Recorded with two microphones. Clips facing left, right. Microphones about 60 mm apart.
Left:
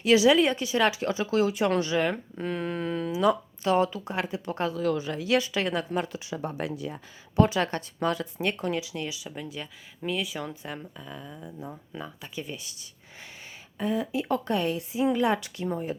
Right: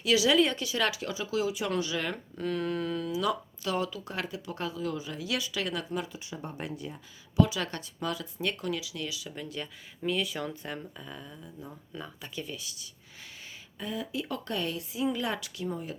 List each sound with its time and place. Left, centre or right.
0.0 s speech: left
0.3 s speech: left
1.1 s speech: left
2.0 s speech: left
4.1 s speech: left
4.4 s speech: left
4.8 s speech: left
6.1 s speech: left
7.3 s speech: left
9.3 s speech: centre
11.3 s speech: left
11.9 s speech: centre
12.4 s speech: left